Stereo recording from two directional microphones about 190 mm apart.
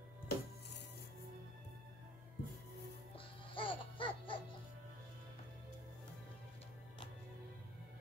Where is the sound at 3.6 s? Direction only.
25° left (ahead or behind).